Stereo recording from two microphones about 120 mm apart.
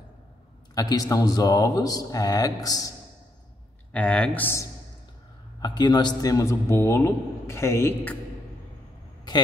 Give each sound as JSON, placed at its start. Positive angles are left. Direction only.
{"t": 0.7, "sound": "speech", "side_deg": 30}
{"t": 3.9, "sound": "speech", "side_deg": 10}
{"t": 5.6, "sound": "a man's voice", "side_deg": 35}